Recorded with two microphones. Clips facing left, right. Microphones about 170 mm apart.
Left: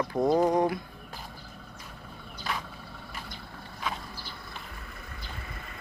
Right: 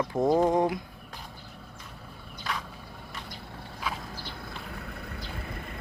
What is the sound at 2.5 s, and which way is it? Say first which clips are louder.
Vehicle: even; centre (ahead or behind).